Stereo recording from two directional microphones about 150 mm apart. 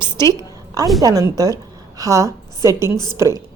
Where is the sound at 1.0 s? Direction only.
25° right (ahead or behind).